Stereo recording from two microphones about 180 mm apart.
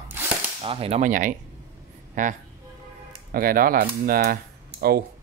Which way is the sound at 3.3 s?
55° right (ahead or behind).